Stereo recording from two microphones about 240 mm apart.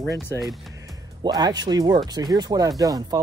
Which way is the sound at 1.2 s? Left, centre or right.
Centre.